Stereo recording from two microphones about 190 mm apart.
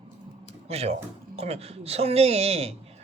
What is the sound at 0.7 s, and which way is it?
A man's voice, 35° right (ahead or behind).